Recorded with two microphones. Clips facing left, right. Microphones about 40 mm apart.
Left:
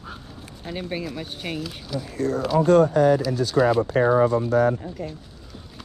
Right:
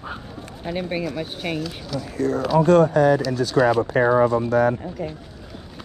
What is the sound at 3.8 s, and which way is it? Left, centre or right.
Speech, right.